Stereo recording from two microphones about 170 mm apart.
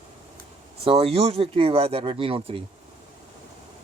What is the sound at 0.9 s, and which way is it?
Speech, 35° right (ahead or behind).